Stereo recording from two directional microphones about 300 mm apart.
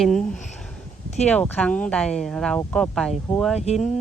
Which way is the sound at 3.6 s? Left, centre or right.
Left.